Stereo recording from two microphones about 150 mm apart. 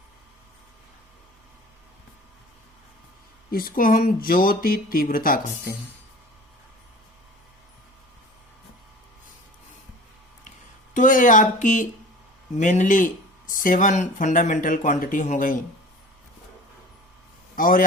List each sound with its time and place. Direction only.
3.5 s speech: 75° left (ahead or behind)
10.9 s speech: 60° left (ahead or behind)
17.5 s a man's voice: 65° left (ahead or behind)